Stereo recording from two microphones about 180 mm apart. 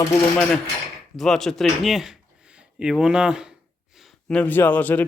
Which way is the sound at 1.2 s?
Centre (ahead or behind).